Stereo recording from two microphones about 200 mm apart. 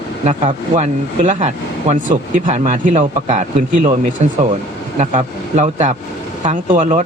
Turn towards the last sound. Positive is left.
turn(degrees=-40)  # may be behind; listen again after turning